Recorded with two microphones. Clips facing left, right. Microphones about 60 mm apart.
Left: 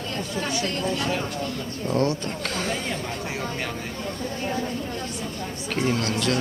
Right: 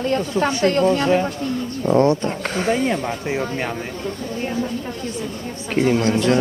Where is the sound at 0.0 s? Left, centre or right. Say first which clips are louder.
Right 10 dB; right.